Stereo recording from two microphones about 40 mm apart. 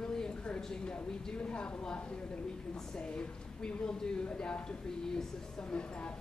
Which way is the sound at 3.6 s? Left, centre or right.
Left.